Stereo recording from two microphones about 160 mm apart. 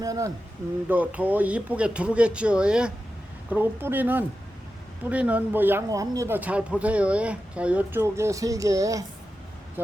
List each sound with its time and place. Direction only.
0.0 s speech: 20° right (ahead or behind)
0.9 s speech: 10° right (ahead or behind)